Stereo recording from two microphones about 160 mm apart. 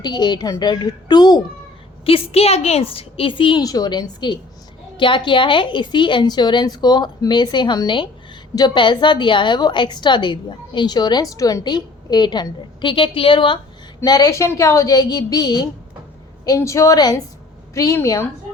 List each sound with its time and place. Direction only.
0.0 s a woman's voice: 25° left (ahead or behind)